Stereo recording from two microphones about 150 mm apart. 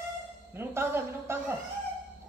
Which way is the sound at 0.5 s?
15° right (ahead or behind).